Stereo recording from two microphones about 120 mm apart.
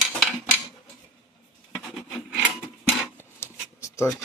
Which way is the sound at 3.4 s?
25° left (ahead or behind).